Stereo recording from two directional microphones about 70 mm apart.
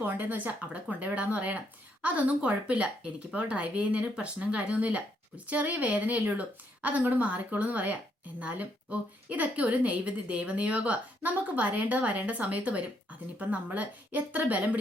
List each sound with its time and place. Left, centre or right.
0.0 s speech: right